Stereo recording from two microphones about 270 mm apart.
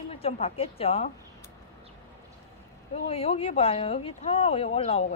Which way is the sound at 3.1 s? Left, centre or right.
Left.